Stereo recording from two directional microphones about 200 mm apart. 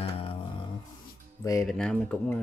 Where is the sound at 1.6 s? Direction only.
5° left (ahead or behind).